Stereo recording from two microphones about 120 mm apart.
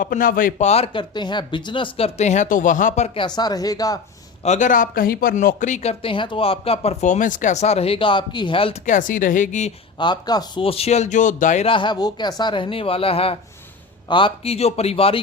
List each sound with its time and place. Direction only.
0.6 s speech: 65° left (ahead or behind)
0.9 s speech: 40° left (ahead or behind); by 3.1 s 80° left
3.2 s speech: 35° left (ahead or behind)
4.4 s speech: 85° left; by 6.9 s 55° left (ahead or behind)
7.0 s speech: 90° left; by 8.8 s 50° left (ahead or behind)
8.9 s a woman's voice: 90° left
10.0 s speech: 35° left (ahead or behind)
10.6 s speech: 55° left (ahead or behind); by 11.6 s 90° left
11.6 s speech: 45° left (ahead or behind)